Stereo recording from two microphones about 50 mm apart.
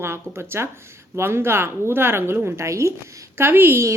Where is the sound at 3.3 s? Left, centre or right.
Right.